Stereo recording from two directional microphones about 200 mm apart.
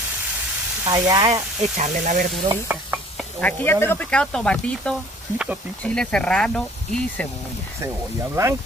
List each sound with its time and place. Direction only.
0.8 s speech: 20° right (ahead or behind)
1.3 s speech: 40° right (ahead or behind)
2.4 s speech: 10° right (ahead or behind)
3.3 s speech: 10° left (ahead or behind)
7.8 s speech: 15° right (ahead or behind)